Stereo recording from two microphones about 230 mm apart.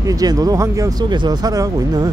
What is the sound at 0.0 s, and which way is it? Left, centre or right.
Speech, centre.